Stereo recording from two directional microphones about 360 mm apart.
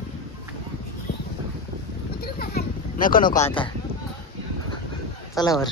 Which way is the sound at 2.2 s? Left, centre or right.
Left.